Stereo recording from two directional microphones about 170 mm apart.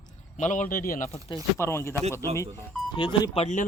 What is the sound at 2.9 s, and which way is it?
Speech, 25° left (ahead or behind).